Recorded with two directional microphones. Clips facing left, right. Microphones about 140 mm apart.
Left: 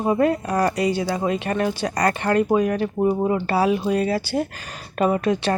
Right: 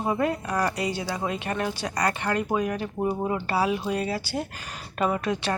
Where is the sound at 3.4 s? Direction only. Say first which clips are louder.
Left 5 dB; 40° left (ahead or behind).